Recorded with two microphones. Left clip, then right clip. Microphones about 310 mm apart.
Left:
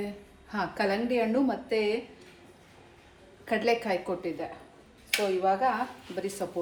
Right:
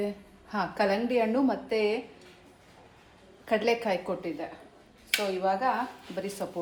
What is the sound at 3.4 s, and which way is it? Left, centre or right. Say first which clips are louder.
Speech: right 1 dB; centre.